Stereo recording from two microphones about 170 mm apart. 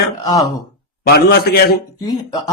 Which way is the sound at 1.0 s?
65° left (ahead or behind).